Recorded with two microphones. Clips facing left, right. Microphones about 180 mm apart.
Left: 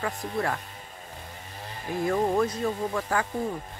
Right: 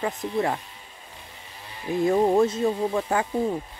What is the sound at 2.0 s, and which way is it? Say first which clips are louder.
Speech: right 5 dB; 25° right (ahead or behind).